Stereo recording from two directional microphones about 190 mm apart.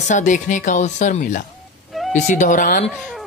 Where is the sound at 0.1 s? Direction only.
40° left (ahead or behind).